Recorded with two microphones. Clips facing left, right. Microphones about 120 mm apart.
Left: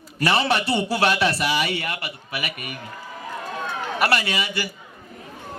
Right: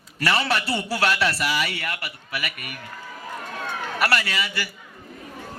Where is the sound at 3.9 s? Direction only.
20° left (ahead or behind).